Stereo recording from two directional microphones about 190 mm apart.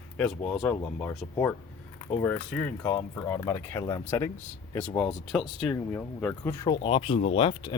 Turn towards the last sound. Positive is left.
turn(degrees=25)  # may be behind; listen again after turning